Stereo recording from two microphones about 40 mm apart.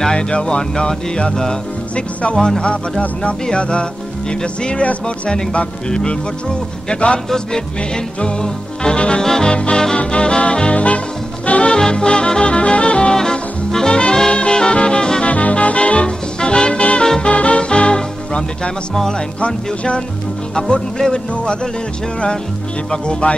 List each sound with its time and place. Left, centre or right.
0.0 s speech: left
3.4 s speech: left
7.2 s speech: centre
9.2 s music: centre
9.5 s speech: left
9.9 s music: left
13.1 s music: centre
15.2 s music: left; by 17.3 s centre
17.3 s music: left
19.1 s speech: left
22.8 s speech: left